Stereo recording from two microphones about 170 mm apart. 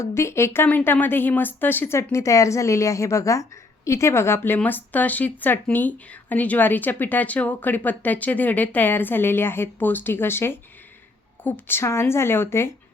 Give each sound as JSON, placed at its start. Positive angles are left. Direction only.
{"t": 0.0, "sound": "speech", "side_deg": 15}